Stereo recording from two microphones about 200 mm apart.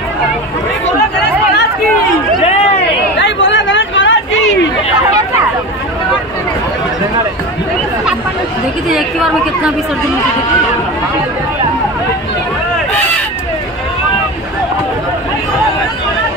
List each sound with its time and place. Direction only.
3.2 s chatter: 60° left (ahead or behind)